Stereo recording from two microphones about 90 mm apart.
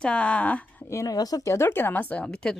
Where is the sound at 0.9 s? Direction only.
40° left (ahead or behind); by 2.5 s 10° left (ahead or behind).